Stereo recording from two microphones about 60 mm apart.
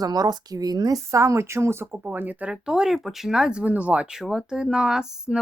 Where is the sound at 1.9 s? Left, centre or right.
Right.